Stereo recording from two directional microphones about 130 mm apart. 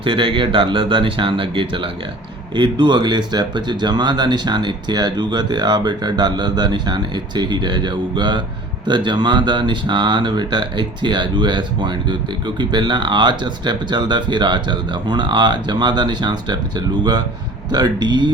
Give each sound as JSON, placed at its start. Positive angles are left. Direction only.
{"t": 0.0, "sound": "speech", "side_deg": -40}